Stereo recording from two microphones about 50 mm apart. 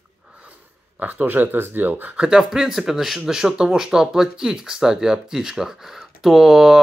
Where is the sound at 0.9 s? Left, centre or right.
Right.